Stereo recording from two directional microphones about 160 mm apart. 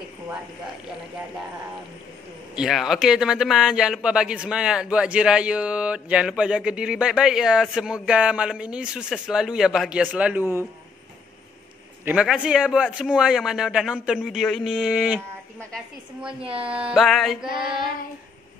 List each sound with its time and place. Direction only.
2.5 s a man's voice: 5° right (ahead or behind)
12.0 s a man's voice: 5° right (ahead or behind)
16.4 s speech: 35° right (ahead or behind)
16.7 s a man's voice: 5° right (ahead or behind)